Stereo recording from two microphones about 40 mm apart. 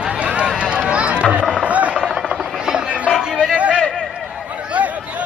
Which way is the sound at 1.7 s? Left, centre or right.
Right.